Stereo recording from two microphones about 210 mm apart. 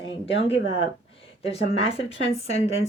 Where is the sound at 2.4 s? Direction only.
30° left (ahead or behind).